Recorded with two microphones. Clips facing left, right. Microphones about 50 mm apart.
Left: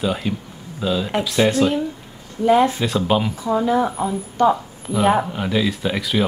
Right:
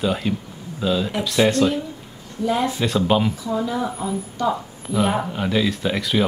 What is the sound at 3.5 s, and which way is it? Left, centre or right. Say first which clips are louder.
A woman's voice: left 5 dB; left.